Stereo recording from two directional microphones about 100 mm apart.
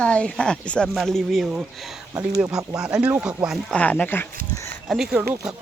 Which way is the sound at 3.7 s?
15° left (ahead or behind).